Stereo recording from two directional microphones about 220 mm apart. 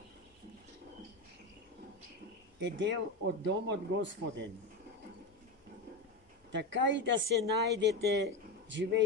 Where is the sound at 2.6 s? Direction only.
55° right (ahead or behind).